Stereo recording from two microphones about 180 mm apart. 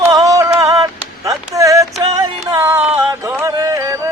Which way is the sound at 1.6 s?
20° right (ahead or behind).